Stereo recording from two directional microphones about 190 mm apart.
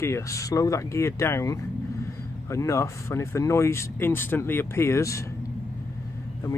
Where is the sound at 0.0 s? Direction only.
15° left (ahead or behind).